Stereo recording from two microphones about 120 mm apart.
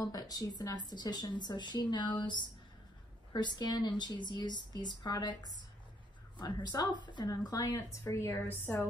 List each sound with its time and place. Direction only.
0.0 s speech: 30° left (ahead or behind)